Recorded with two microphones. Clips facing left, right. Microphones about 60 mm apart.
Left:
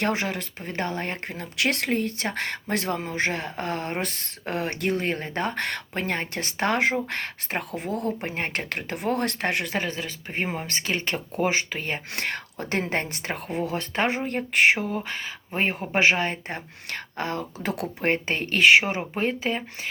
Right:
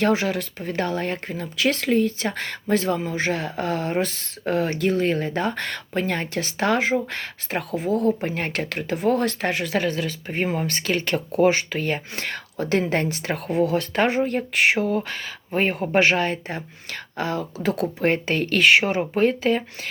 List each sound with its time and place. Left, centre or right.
0.1 s speech: left
1.3 s speech: left
9.6 s speech: centre
12.1 s speech: left
13.3 s speech: left
15.5 s speech: centre
16.0 s speech: centre
16.3 s speech: left; by 19.9 s centre